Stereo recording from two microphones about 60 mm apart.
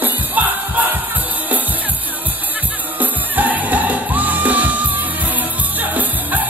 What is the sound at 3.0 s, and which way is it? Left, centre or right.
Music, right.